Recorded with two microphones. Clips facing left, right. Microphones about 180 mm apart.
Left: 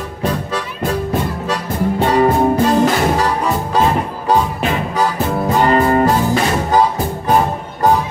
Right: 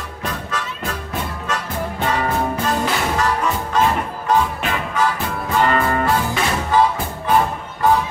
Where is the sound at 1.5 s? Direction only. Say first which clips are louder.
Left 6 dB; 35° left (ahead or behind).